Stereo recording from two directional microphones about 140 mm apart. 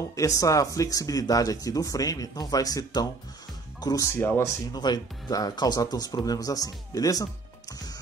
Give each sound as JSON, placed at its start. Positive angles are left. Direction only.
{"t": 0.1, "sound": "speech", "side_deg": 25}
{"t": 4.7, "sound": "speech", "side_deg": 30}